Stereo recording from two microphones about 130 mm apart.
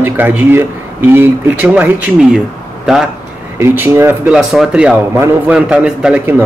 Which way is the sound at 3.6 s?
20° right (ahead or behind).